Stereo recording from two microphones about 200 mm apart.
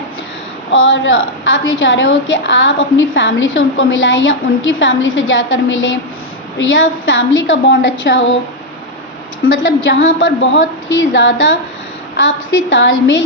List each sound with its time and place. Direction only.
0.7 s a woman's voice: 70° left (ahead or behind)
9.5 s a woman's voice: 70° left (ahead or behind)